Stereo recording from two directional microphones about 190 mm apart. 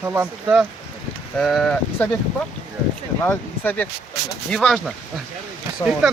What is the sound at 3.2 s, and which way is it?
Speech, 10° left (ahead or behind).